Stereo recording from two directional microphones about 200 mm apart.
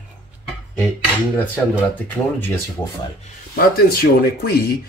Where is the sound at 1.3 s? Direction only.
10° left (ahead or behind).